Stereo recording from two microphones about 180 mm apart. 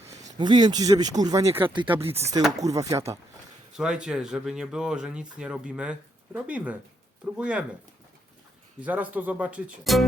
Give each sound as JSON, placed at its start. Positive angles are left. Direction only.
{"t": 0.3, "sound": "speech", "side_deg": -25}
{"t": 2.6, "sound": "speech", "side_deg": -20}
{"t": 3.8, "sound": "speech", "side_deg": -5}
{"t": 8.8, "sound": "speech", "side_deg": -10}